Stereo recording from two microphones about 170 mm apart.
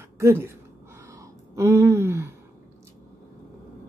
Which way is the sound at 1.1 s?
15° right (ahead or behind).